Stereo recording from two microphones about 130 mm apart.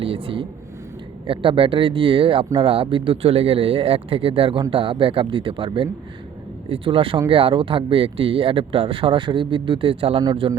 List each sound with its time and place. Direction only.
0.0 s speech: 45° right (ahead or behind)